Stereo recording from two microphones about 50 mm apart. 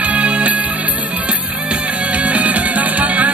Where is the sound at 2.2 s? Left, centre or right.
Right.